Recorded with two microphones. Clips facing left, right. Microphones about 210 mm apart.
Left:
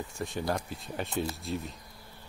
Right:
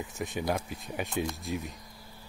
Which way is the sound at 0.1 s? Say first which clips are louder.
Right 1 dB; 20° right (ahead or behind).